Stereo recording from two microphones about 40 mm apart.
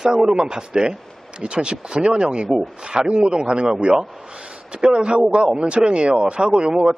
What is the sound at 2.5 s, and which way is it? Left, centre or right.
A man's voice, centre.